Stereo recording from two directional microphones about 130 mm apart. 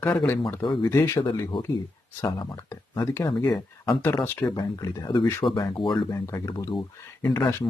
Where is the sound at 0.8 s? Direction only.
20° left (ahead or behind).